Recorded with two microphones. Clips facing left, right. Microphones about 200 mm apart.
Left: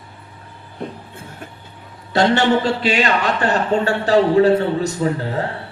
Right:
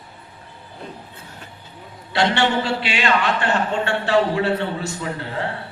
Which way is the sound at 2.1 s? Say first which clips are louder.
Left 4 dB; 45° left (ahead or behind).